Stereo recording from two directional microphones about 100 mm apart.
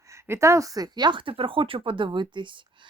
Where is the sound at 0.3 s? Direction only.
30° right (ahead or behind).